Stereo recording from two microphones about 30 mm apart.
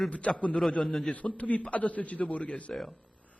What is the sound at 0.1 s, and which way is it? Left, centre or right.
Speech, left.